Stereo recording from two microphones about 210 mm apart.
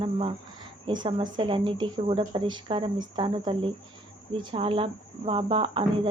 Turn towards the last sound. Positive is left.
turn(degrees=-25)  # may be behind; listen again after turning